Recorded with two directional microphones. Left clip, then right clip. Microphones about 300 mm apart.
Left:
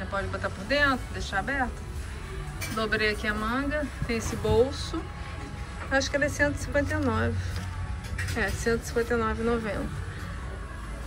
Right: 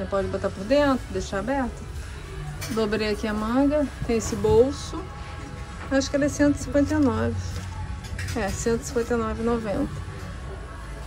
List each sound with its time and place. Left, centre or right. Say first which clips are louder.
0.1 s speech: right 5 dB; centre
2.8 s speech: right 1 dB; right
5.9 s speech: right 2 dB; right
8.4 s speech: right 2 dB; right